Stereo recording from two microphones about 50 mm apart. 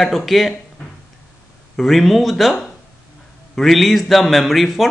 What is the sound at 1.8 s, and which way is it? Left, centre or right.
Speech, centre.